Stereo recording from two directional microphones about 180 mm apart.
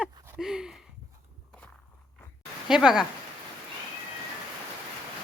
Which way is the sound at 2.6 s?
5° right (ahead or behind).